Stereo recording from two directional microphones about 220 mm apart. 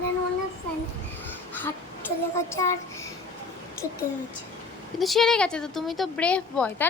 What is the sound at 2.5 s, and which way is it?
Speech, 15° left (ahead or behind).